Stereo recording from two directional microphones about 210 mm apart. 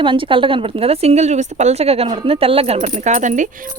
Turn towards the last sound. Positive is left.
turn(degrees=-35)  # may be behind; listen again after turning